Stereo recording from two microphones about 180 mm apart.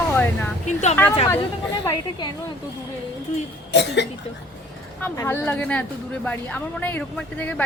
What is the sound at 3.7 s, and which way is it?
Cough, 75° left (ahead or behind).